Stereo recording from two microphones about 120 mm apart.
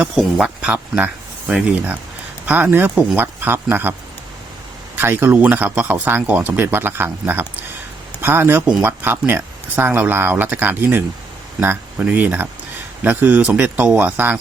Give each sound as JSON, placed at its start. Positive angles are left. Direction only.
{"t": 0.2, "sound": "speech", "side_deg": -5}
{"t": 4.9, "sound": "speech", "side_deg": -15}